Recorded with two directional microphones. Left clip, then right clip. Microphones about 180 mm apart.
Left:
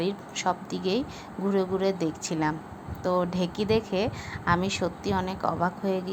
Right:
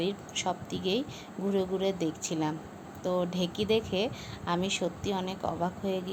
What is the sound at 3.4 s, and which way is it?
Speech, 45° left (ahead or behind).